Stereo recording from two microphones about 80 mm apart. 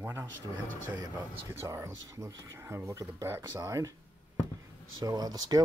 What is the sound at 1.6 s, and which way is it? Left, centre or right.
Speech, right.